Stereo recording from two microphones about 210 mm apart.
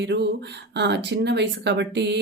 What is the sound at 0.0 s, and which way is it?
Speech, 55° right (ahead or behind).